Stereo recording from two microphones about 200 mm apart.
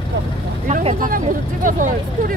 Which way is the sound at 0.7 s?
40° right (ahead or behind).